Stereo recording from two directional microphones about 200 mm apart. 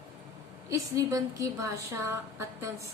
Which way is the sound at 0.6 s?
15° right (ahead or behind).